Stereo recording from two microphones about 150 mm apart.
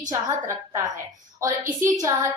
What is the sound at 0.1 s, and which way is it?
A woman's voice, 20° right (ahead or behind).